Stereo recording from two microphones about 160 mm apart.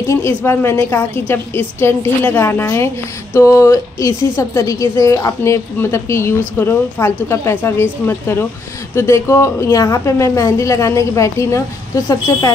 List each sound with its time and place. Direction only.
0.0 s a woman's voice: 15° left (ahead or behind)